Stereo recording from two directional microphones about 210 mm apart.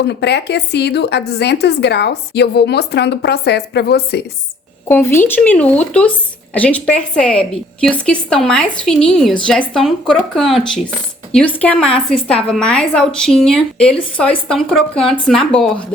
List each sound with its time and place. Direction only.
0.0 s a woman's voice: 55° left (ahead or behind)
4.9 s a woman's voice: 10° left (ahead or behind)